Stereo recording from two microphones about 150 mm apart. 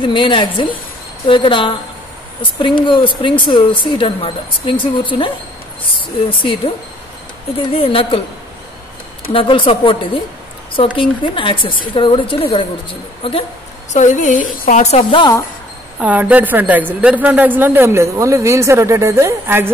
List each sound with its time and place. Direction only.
0.0 s a woman's voice: 35° left (ahead or behind)
9.3 s a woman's voice: 35° left (ahead or behind)
13.9 s a woman's voice: 55° left (ahead or behind)
15.1 s speech: 25° left (ahead or behind)
16.0 s a man's voice: 10° right (ahead or behind)